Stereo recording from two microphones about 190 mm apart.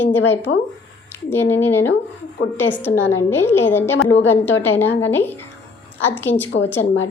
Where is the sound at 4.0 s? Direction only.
75° left (ahead or behind).